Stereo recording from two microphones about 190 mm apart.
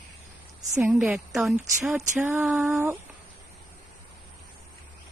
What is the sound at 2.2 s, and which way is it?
Speech, 15° right (ahead or behind).